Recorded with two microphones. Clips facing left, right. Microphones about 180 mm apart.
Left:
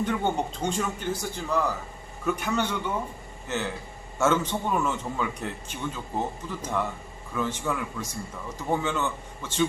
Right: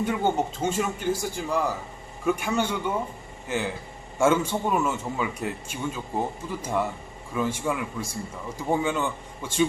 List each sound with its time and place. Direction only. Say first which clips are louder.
0.0 s a man's voice: right 2 dB; 10° right (ahead or behind)